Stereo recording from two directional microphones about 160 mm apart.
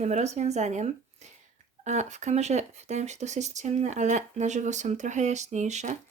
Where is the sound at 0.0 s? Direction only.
45° right (ahead or behind).